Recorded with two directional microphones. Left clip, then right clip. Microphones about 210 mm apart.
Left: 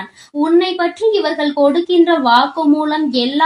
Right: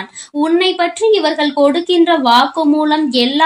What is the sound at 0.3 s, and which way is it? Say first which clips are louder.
A woman's voice: right 1 dB; 35° right (ahead or behind).